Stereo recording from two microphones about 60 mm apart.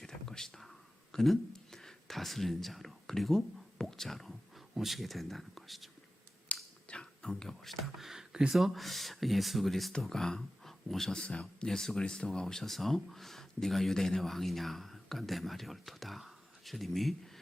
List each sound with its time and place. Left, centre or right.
0.0 s whispering: centre
6.5 s a sound: left
7.6 s speech: centre